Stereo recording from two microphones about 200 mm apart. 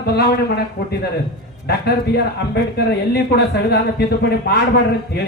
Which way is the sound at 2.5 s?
55° left (ahead or behind).